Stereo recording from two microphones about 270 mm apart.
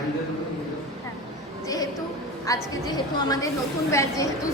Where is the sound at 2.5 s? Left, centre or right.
Centre.